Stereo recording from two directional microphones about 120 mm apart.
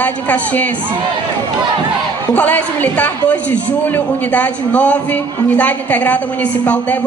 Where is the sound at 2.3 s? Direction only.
15° left (ahead or behind).